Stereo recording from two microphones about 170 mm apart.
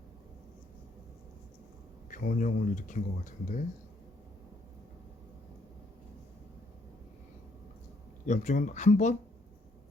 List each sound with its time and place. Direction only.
2.0 s speech: 50° left (ahead or behind)
8.3 s speech: 45° left (ahead or behind)